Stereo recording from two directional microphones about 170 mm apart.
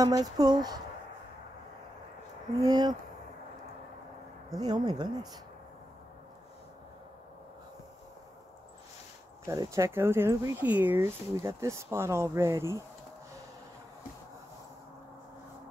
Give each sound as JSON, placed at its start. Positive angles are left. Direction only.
{"t": 0.0, "sound": "speech", "side_deg": -20}
{"t": 2.6, "sound": "speech", "side_deg": -25}
{"t": 4.5, "sound": "speech", "side_deg": -25}
{"t": 9.5, "sound": "speech", "side_deg": -20}